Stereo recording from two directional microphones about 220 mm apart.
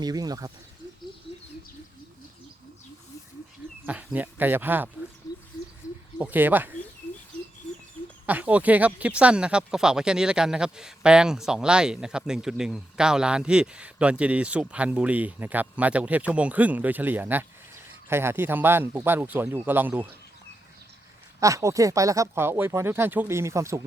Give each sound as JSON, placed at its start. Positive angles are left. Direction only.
{"t": 0.0, "sound": "speech", "side_deg": -15}
{"t": 3.8, "sound": "speech", "side_deg": -5}
{"t": 5.8, "sound": "bird", "side_deg": 15}
{"t": 6.1, "sound": "speech", "side_deg": -10}
{"t": 8.3, "sound": "speech", "side_deg": -5}
{"t": 21.4, "sound": "speech", "side_deg": -15}